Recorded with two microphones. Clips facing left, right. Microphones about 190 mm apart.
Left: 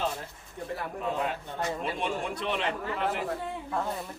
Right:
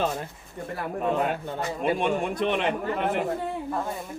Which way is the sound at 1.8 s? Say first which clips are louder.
Right 7 dB; 55° right (ahead or behind).